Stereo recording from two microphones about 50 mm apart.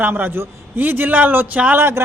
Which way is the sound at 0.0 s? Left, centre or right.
Right.